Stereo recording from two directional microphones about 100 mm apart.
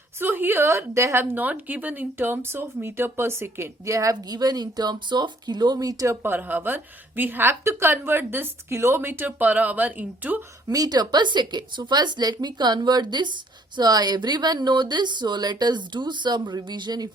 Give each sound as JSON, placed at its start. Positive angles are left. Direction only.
{"t": 0.2, "sound": "a woman's voice", "side_deg": -20}
{"t": 6.2, "sound": "a woman's voice", "side_deg": -20}
{"t": 10.7, "sound": "speech", "side_deg": -40}